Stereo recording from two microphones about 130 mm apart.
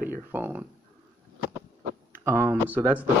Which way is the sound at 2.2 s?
20° right (ahead or behind).